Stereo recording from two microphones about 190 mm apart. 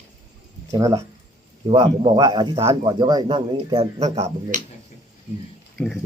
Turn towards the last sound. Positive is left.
turn(degrees=0)  # may be behind; listen again after turning